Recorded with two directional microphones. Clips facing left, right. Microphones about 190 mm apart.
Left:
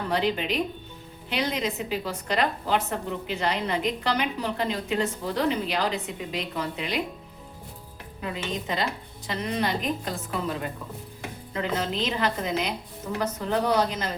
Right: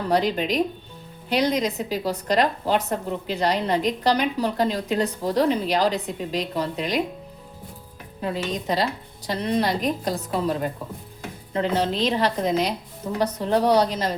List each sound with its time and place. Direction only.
0.1 s a woman's voice: 40° right (ahead or behind)
8.2 s a woman's voice: 35° right (ahead or behind)